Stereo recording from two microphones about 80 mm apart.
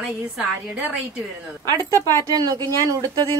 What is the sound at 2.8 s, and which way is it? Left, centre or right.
Speech, right.